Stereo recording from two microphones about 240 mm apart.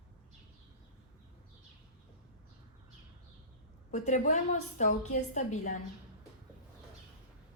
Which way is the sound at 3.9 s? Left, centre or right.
Left.